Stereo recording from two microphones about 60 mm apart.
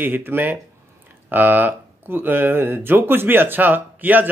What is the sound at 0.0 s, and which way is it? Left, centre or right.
Speech, right.